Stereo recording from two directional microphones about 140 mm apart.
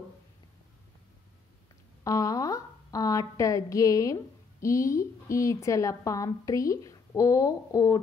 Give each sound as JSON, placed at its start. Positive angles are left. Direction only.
{"t": 2.0, "sound": "a woman's voice", "side_deg": 25}